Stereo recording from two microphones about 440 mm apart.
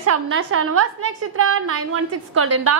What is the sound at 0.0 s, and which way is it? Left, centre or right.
A woman's voice, right.